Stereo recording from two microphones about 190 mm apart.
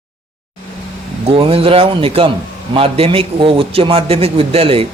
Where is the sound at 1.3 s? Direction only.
30° right (ahead or behind).